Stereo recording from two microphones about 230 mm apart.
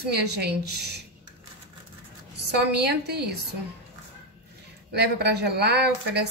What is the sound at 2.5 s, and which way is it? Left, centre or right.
Speech, right.